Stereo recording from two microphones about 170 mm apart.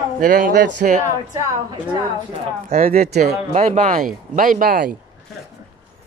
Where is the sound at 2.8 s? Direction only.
60° right (ahead or behind).